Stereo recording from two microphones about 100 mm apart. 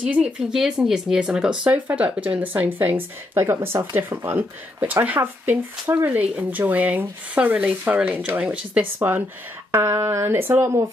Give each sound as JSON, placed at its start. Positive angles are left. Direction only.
{"t": 0.0, "sound": "speech", "side_deg": -10}